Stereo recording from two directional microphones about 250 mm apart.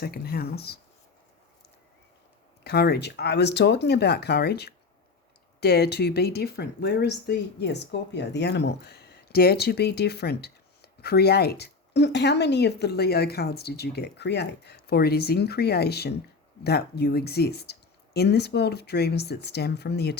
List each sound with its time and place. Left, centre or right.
0.0 s speech: left
2.6 s speech: left